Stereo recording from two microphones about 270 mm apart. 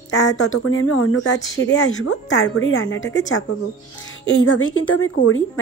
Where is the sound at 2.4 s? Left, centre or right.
Left.